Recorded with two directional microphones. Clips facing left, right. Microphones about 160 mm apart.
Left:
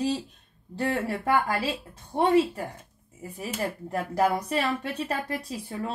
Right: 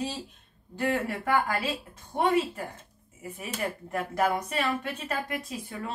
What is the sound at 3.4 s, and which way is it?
Speech, 35° left (ahead or behind).